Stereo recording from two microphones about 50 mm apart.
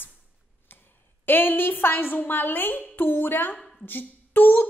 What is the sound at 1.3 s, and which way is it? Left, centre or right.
A woman's voice, left.